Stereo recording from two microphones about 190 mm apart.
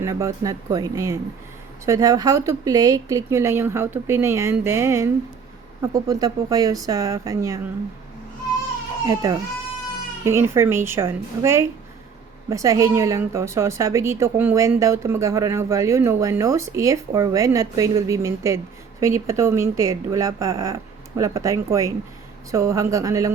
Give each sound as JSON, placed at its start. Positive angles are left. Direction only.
{"t": 0.0, "sound": "speech", "side_deg": -15}
{"t": 9.0, "sound": "speech", "side_deg": -15}